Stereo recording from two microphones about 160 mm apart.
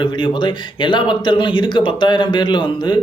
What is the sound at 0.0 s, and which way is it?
A man's voice, 30° left (ahead or behind).